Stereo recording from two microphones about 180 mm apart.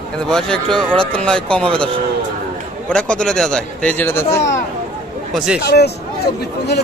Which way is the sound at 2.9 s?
5° left (ahead or behind).